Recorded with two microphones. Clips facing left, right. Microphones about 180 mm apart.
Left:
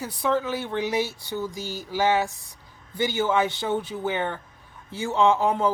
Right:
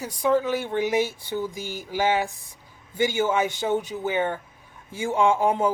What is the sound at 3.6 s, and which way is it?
Speech, 15° right (ahead or behind).